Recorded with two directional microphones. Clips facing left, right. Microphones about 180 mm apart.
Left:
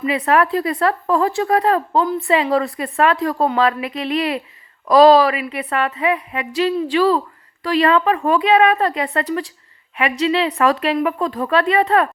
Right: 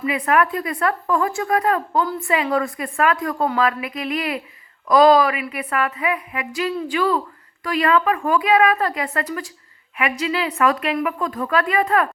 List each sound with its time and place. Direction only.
0.5 s a woman's voice: 30° left (ahead or behind)